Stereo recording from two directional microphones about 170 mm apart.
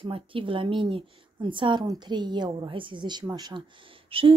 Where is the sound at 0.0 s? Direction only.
30° right (ahead or behind).